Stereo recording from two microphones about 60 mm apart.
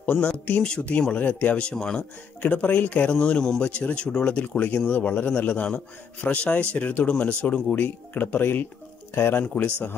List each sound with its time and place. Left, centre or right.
0.0 s speech: left
1.6 s speech: centre
2.4 s speech: left